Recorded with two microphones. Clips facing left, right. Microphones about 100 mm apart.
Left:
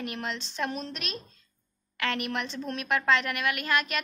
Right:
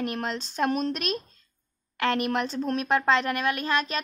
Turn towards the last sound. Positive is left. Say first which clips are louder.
# right 2 dB
turn(degrees=-30)  # may be behind; listen again after turning